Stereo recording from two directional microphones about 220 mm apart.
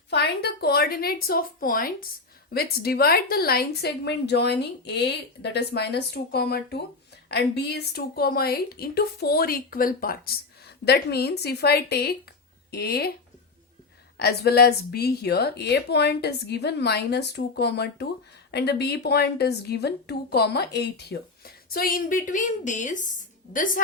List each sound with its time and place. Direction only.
0.1 s a woman's voice: 50° left (ahead or behind)
14.2 s a woman's voice: 45° left (ahead or behind)